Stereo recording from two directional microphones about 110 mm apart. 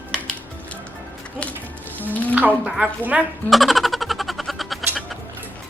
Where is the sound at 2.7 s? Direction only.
15° right (ahead or behind).